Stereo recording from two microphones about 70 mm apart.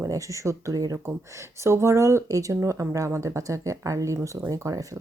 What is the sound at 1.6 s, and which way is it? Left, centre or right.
Speech, right.